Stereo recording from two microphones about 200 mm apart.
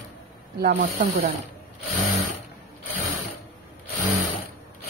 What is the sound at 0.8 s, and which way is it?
Speech, 55° right (ahead or behind).